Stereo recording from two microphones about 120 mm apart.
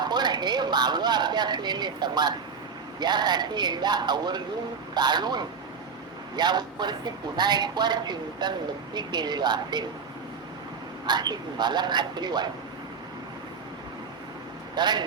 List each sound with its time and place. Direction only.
0.0 s a woman's voice: 35° right (ahead or behind)
11.0 s a woman's voice: 35° right (ahead or behind)
14.8 s a woman's voice: 35° right (ahead or behind)